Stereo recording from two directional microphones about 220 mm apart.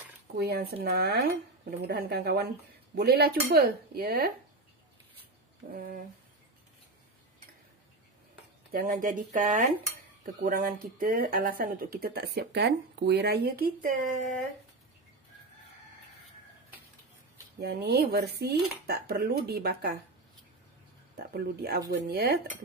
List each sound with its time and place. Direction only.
0.4 s speech: 45° right (ahead or behind)
5.6 s speech: 35° right (ahead or behind)
8.7 s speech: 40° right (ahead or behind)
17.6 s speech: 50° right (ahead or behind)
21.3 s speech: 45° right (ahead or behind)